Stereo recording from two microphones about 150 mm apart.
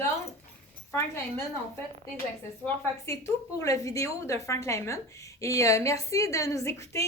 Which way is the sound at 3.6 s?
20° left (ahead or behind).